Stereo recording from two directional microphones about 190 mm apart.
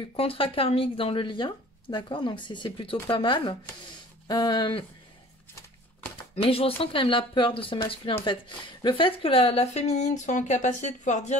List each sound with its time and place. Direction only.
0.0 s speech: 30° left (ahead or behind)
6.3 s a woman's voice: 30° left (ahead or behind)